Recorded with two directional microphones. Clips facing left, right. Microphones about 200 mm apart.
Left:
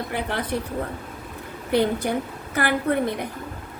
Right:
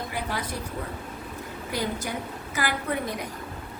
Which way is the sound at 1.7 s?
60° left (ahead or behind).